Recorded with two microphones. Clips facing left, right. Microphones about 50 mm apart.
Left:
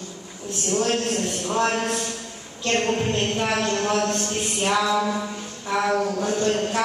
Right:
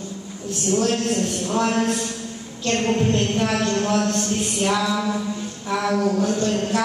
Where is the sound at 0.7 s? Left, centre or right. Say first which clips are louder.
Right 1 dB; left.